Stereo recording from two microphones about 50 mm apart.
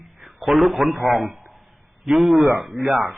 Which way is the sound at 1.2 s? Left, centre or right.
Right.